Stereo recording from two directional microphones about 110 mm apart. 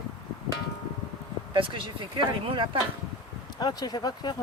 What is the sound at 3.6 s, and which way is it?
Speech, 40° left (ahead or behind).